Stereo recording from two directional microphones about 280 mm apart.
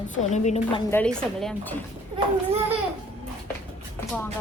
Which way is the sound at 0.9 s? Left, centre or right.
Centre.